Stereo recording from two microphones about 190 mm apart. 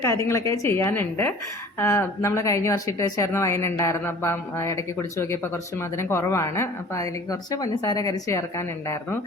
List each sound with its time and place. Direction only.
0.0 s speech: 15° left (ahead or behind)